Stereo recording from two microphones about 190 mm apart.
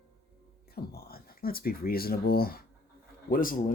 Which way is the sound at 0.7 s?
55° left (ahead or behind).